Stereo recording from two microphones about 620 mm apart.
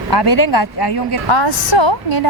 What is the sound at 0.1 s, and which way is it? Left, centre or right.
A woman's voice, left.